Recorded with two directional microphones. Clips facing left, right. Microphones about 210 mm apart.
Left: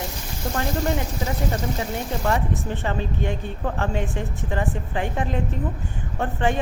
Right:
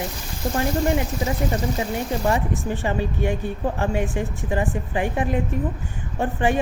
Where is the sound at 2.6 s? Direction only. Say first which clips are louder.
Right 3 dB; 10° right (ahead or behind).